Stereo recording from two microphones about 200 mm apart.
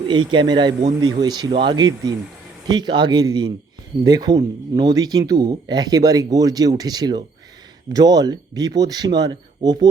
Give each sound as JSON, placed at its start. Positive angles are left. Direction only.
{"t": 0.1, "sound": "speech", "side_deg": -25}